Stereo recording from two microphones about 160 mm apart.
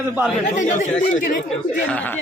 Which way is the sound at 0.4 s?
50° left (ahead or behind).